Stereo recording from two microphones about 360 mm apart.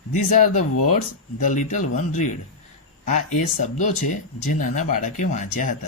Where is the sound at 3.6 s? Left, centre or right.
Left.